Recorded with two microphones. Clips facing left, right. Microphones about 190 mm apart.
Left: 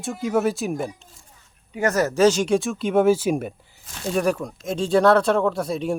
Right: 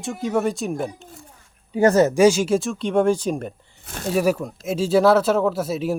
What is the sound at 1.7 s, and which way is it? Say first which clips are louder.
Speech: right 6 dB; 30° right (ahead or behind).